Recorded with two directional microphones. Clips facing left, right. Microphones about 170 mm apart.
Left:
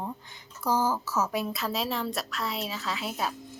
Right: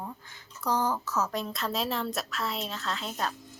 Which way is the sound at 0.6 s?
5° left (ahead or behind).